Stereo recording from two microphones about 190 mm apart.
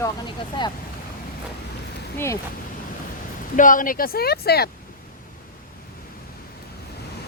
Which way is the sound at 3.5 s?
45° left (ahead or behind).